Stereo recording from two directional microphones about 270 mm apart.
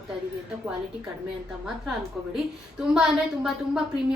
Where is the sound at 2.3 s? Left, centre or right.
Centre.